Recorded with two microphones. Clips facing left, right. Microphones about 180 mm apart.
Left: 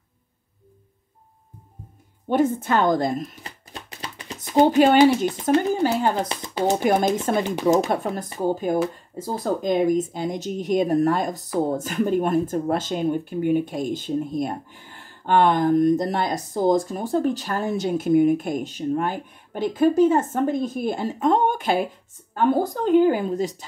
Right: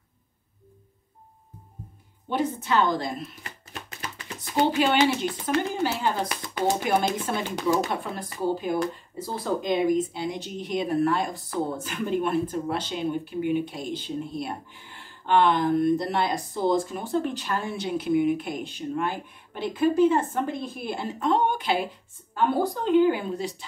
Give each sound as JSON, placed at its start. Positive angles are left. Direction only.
{"t": 2.2, "sound": "speech", "side_deg": 50}
{"t": 4.6, "sound": "speech", "side_deg": 45}